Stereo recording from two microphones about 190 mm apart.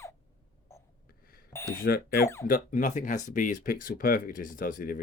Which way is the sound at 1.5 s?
15° left (ahead or behind).